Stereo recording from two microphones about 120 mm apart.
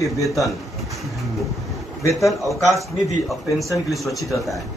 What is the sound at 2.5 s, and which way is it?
A man's voice, centre (ahead or behind).